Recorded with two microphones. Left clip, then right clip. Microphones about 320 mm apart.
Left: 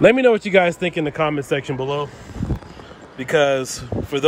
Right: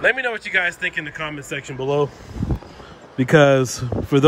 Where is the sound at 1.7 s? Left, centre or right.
Centre.